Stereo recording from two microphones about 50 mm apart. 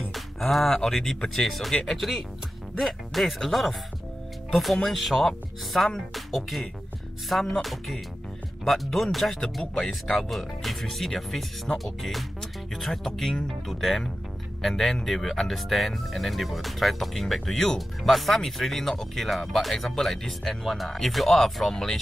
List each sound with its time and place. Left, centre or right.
0.1 s speech: centre